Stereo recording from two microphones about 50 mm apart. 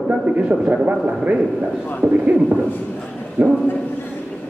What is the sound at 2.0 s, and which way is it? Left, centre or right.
Speech, right.